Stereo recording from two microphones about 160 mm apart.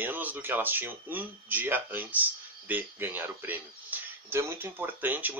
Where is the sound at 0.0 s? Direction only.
10° right (ahead or behind).